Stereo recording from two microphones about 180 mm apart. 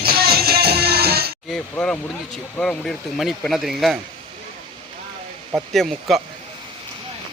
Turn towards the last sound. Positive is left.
turn(degrees=0)  # may be behind; listen again after turning